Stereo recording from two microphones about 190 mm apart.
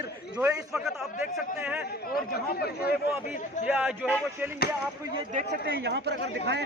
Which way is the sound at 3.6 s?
5° right (ahead or behind).